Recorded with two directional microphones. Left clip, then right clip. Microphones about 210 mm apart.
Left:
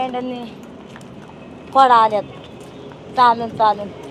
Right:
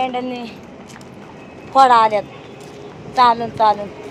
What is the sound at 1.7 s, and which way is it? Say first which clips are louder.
Speech: right 1 dB; 5° left (ahead or behind).